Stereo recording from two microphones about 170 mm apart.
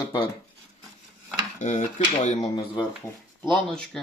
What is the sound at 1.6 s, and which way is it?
Speech, 45° left (ahead or behind).